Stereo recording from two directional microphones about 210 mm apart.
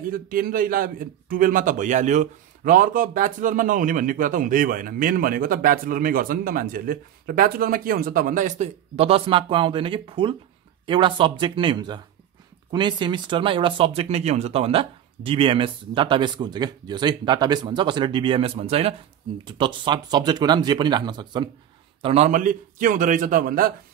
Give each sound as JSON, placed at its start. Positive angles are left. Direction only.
{"t": 0.0, "sound": "a man's voice", "side_deg": -45}